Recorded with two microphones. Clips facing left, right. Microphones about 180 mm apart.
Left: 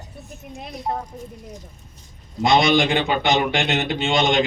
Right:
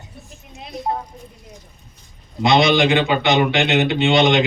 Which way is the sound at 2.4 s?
50° left (ahead or behind).